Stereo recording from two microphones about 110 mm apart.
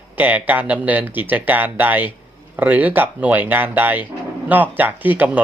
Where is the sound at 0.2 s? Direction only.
15° right (ahead or behind).